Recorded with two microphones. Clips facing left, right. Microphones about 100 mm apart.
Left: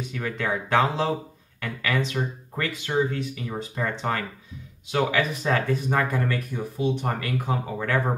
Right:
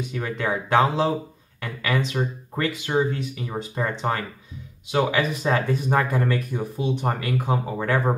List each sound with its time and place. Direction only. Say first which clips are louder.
0.1 s speech: right 1 dB; 15° right (ahead or behind)